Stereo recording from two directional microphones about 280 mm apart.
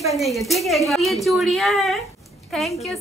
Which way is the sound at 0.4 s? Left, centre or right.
Centre.